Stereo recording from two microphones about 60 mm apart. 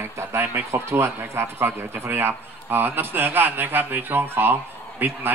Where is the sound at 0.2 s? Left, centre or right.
Right.